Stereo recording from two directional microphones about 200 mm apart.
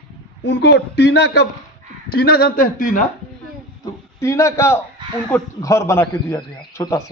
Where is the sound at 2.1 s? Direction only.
50° left (ahead or behind).